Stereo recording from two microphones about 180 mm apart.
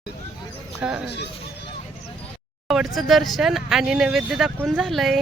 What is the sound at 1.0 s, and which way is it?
Speech, 70° left (ahead or behind).